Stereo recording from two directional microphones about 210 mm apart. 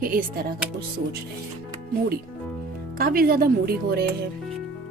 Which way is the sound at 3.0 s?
45° right (ahead or behind).